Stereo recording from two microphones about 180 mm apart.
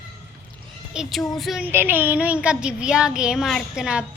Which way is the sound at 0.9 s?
Centre (ahead or behind).